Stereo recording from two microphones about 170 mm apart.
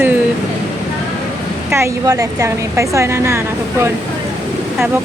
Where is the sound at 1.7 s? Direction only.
15° right (ahead or behind).